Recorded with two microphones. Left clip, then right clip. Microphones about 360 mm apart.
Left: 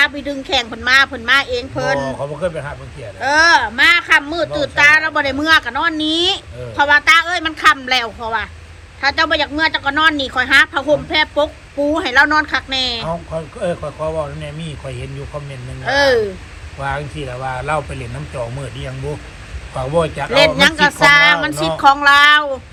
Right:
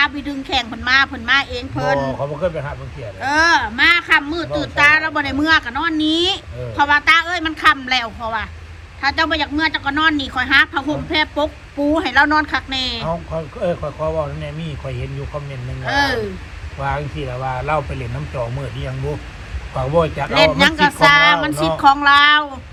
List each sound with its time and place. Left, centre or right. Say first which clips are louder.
0.0 s speech: left 2 dB; centre
2.0 s speech: even; left
3.2 s speech: left 3 dB; centre
13.1 s speech: even; left
15.9 s speech: left 5 dB; centre
16.8 s speech: even; left
20.3 s speech: left 2 dB; centre